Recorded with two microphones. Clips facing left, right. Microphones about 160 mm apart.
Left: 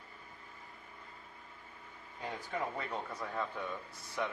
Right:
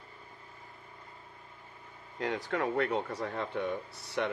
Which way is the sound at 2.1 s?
80° right.